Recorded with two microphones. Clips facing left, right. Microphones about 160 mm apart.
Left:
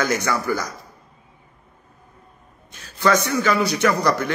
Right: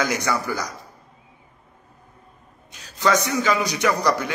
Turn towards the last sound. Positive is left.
turn(degrees=-15)  # may be behind; listen again after turning